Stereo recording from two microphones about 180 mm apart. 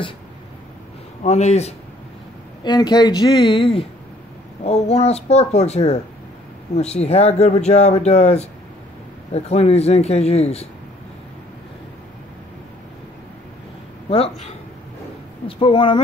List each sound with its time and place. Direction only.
1.2 s speech: 40° left (ahead or behind)
2.6 s speech: 25° left (ahead or behind)
14.1 s speech: 35° left (ahead or behind)